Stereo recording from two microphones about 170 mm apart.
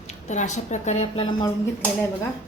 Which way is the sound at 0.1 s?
45° left (ahead or behind).